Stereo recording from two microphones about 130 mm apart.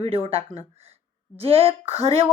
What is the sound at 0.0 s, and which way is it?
A woman's voice, 45° right (ahead or behind).